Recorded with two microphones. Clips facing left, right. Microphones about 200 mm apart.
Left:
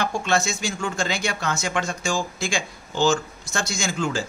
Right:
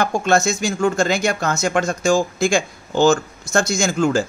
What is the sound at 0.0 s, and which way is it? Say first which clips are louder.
Speech: right 6 dB; 45° right (ahead or behind).